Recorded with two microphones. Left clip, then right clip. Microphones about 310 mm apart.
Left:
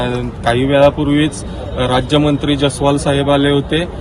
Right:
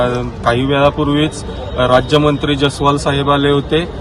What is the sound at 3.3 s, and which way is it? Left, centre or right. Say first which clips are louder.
Speech: right 2 dB; centre.